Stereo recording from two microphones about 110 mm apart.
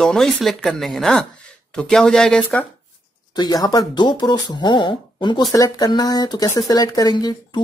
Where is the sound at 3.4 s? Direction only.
35° left (ahead or behind).